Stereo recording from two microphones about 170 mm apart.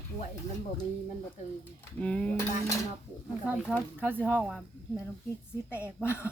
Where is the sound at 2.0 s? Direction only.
5° left (ahead or behind).